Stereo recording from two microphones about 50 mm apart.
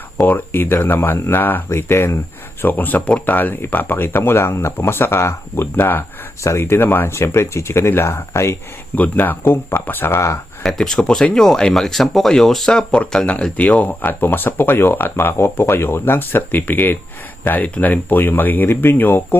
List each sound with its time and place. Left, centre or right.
0.2 s speech: left
1.7 s speech: left
2.6 s speech: left
6.4 s speech: left
9.0 s speech: left
10.6 s speech: centre
13.6 s speech: left